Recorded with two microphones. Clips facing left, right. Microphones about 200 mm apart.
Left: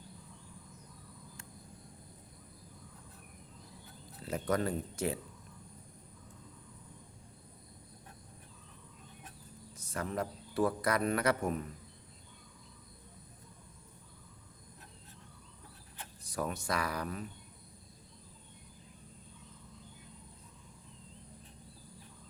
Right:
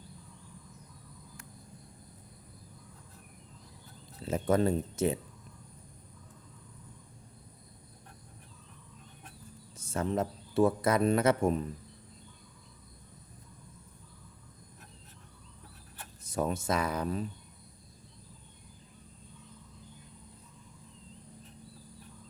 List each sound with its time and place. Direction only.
4.2 s speech: 25° right (ahead or behind)
9.7 s speech: 25° right (ahead or behind)
16.2 s speech: 25° right (ahead or behind)